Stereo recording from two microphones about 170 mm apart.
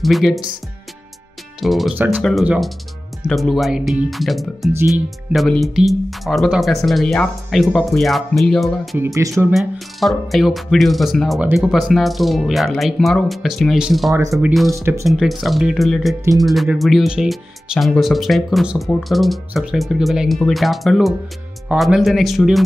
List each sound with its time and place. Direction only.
0.0 s speech: centre (ahead or behind)
1.6 s speech: centre (ahead or behind)
8.9 s speech: 15° right (ahead or behind)
9.5 s speech: centre (ahead or behind)
14.8 s speech: 15° right (ahead or behind)
15.0 s speech: centre (ahead or behind)